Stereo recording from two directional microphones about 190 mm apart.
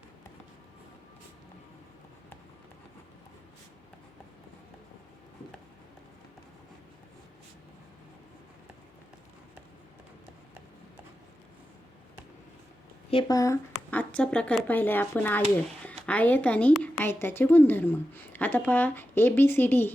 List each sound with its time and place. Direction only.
13.1 s speech: 25° left (ahead or behind)
13.9 s a woman's voice: 5° left (ahead or behind)